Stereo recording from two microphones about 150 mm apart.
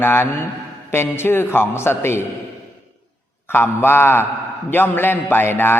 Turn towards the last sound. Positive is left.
turn(degrees=15)  # may be behind; listen again after turning